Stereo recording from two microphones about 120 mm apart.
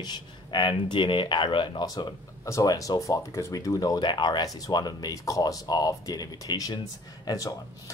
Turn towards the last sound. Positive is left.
turn(degrees=30)  # may be behind; listen again after turning